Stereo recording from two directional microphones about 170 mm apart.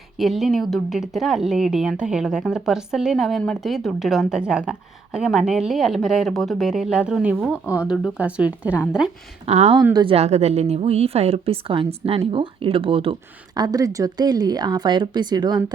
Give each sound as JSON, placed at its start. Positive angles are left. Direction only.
{"t": 0.2, "sound": "speech", "side_deg": 0}
{"t": 9.5, "sound": "a woman's voice", "side_deg": -35}